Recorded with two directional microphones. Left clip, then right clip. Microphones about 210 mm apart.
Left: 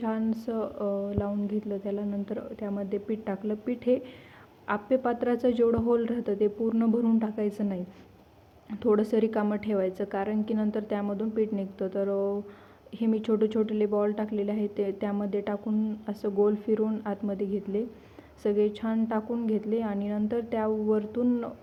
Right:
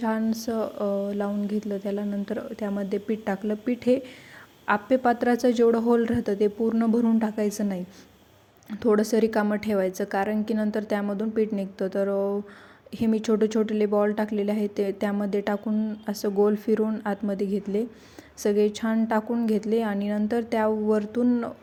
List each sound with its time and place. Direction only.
0.0 s a woman's voice: 30° right (ahead or behind)